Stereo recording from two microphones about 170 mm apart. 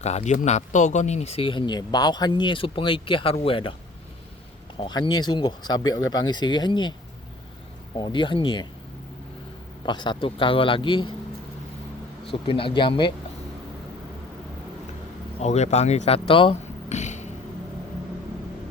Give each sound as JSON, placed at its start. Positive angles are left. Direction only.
{"t": 0.0, "sound": "speech", "side_deg": 40}
{"t": 4.8, "sound": "speech", "side_deg": 25}
{"t": 7.9, "sound": "speech", "side_deg": 25}
{"t": 9.8, "sound": "speech", "side_deg": 25}
{"t": 12.2, "sound": "speech", "side_deg": 30}
{"t": 15.4, "sound": "speech", "side_deg": 40}
{"t": 16.9, "sound": "a sound", "side_deg": 45}